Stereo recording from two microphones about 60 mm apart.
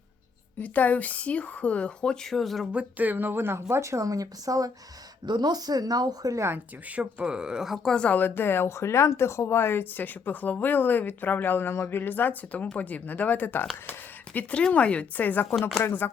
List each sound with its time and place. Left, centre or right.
0.6 s speech: left; by 2.6 s centre
2.7 s a woman's voice: right
5.5 s speech: right
6.9 s speech: centre
8.0 s speech: left